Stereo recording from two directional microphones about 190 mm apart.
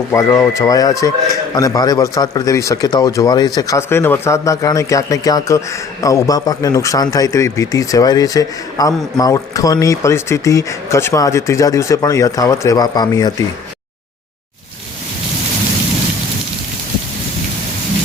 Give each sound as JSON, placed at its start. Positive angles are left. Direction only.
{"t": 0.1, "sound": "speech", "side_deg": 15}